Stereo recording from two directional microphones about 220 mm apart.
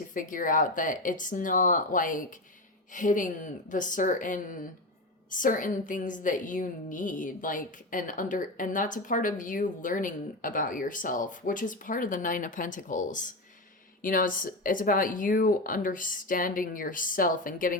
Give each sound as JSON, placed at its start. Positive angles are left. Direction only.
{"t": 0.1, "sound": "a woman's voice", "side_deg": 40}